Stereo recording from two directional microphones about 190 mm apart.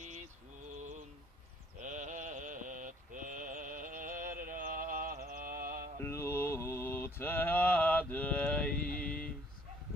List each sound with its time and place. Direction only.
1.8 s sheep: 40° right (ahead or behind)
6.0 s mantra: 15° left (ahead or behind)